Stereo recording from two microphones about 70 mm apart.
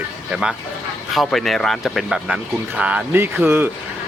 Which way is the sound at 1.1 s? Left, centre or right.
Centre.